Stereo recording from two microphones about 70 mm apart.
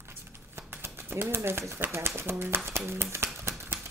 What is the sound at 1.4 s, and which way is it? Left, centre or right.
Speech, right.